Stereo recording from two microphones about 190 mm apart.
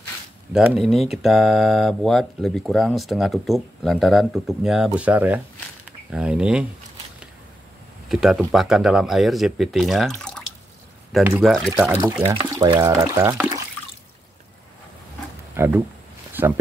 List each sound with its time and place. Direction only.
0.5 s speech: centre (ahead or behind)
8.1 s speech: centre (ahead or behind)
11.2 s speech: 10° right (ahead or behind)
11.6 s speech: centre (ahead or behind)
11.9 s speech: 15° right (ahead or behind)
15.5 s speech: 15° right (ahead or behind)